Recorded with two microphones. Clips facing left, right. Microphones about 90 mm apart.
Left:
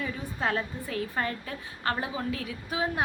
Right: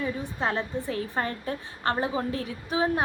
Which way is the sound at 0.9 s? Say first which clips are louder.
Right 2 dB; 30° right (ahead or behind).